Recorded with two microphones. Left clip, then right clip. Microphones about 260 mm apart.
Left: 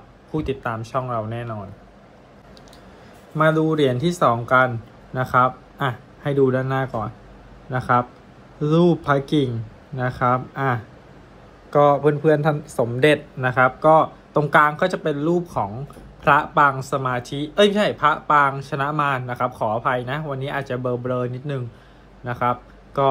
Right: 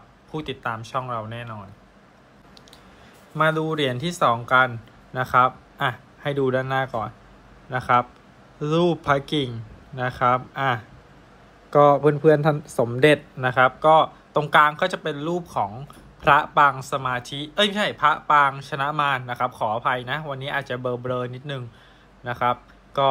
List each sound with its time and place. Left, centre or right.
0.3 s speech: right
3.3 s speech: right
12.0 s speech: centre
22.2 s a sound: right